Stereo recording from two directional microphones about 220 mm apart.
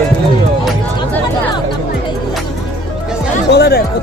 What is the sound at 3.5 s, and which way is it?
Speech, 50° left (ahead or behind).